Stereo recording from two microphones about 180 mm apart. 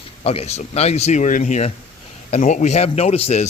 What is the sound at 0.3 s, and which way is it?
Speech, 35° left (ahead or behind).